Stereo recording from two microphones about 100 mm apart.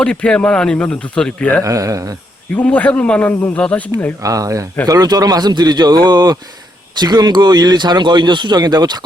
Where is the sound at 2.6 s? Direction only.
15° left (ahead or behind).